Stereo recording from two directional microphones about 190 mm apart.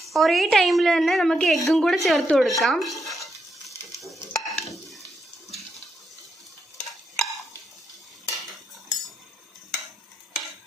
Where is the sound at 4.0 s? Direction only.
Centre (ahead or behind).